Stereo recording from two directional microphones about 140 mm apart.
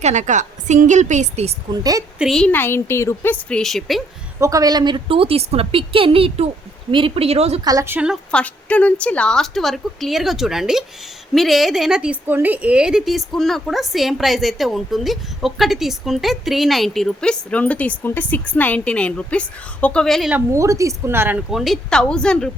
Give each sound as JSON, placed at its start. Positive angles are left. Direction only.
{"t": 0.0, "sound": "a woman's voice", "side_deg": -55}
{"t": 1.7, "sound": "a woman's voice", "side_deg": -25}
{"t": 2.1, "sound": "a woman's voice", "side_deg": 0}
{"t": 2.5, "sound": "a woman's voice", "side_deg": 15}
{"t": 4.4, "sound": "a woman's voice", "side_deg": -25}
{"t": 7.6, "sound": "a woman's voice", "side_deg": -25}
{"t": 7.9, "sound": "speech", "side_deg": -10}
{"t": 8.3, "sound": "a woman's voice", "side_deg": 10}
{"t": 20.3, "sound": "speech", "side_deg": -20}
{"t": 21.5, "sound": "a woman's voice", "side_deg": 0}